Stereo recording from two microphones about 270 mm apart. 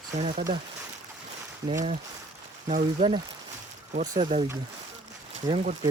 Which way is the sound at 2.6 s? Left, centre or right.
Right.